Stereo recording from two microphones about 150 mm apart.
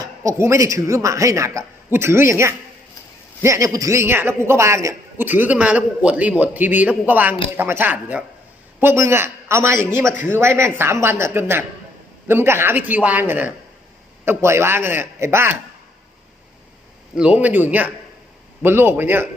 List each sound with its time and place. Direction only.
0.0 s a man's voice: 20° right (ahead or behind)
17.2 s a man's voice: 10° right (ahead or behind)